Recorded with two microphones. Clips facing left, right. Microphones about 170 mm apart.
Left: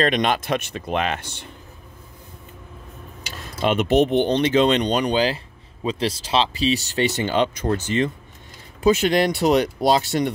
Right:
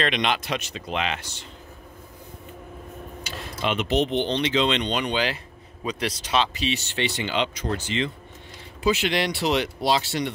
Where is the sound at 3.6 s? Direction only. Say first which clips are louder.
Left 6 dB; 45° left (ahead or behind).